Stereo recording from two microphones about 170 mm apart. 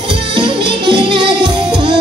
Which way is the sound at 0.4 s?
30° right (ahead or behind).